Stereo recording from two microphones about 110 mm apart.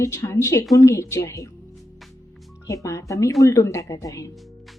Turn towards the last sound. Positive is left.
turn(degrees=30)  # may be behind; listen again after turning